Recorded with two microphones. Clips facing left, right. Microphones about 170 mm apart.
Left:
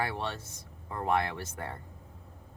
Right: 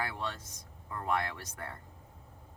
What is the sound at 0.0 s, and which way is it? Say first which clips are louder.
Speech: left 4 dB; 25° left (ahead or behind).